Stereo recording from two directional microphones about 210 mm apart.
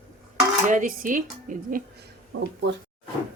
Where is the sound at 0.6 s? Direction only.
40° right (ahead or behind).